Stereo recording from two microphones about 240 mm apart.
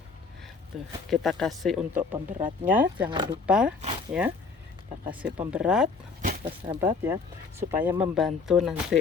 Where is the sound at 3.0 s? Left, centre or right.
Centre.